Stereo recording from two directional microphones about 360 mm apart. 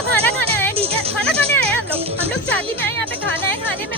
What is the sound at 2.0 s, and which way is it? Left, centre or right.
Music, centre.